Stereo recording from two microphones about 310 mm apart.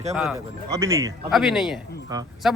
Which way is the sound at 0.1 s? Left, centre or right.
Centre.